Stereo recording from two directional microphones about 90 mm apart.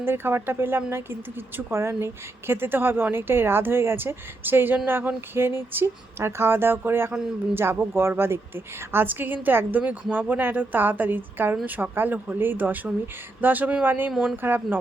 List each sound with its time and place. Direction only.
0.0 s a woman's voice: 25° right (ahead or behind)
14.1 s speech: centre (ahead or behind)
14.4 s a woman's voice: 25° right (ahead or behind)